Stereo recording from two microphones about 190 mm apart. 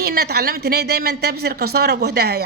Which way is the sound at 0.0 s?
55° right (ahead or behind).